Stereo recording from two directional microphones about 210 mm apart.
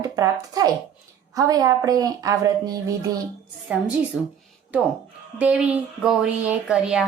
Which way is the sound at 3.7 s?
5° right (ahead or behind).